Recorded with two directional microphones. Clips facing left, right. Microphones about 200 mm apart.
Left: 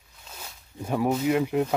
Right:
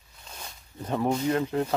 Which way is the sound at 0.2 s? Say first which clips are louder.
Even; 5° left (ahead or behind).